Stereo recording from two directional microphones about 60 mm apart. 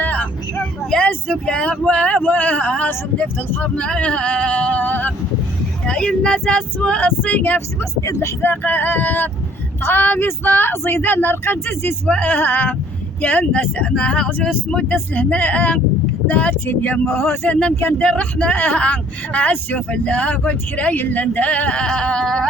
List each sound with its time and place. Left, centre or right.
0.0 s vehicle: left
0.8 s vehicle: centre
1.0 s speech: centre; by 3.6 s left
3.6 s speech: centre
5.8 s speech: centre; by 7.9 s left
8.0 s speech: left
8.4 s speech: left
14.4 s speech: centre
14.8 s speech: left
17.5 s speech: left
17.7 s speech: left
18.0 s speech: centre